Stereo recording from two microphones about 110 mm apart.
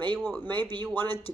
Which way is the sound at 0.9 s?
20° left (ahead or behind).